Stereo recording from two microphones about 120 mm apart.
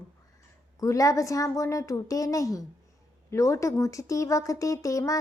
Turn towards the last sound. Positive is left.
turn(degrees=30)  # may be behind; listen again after turning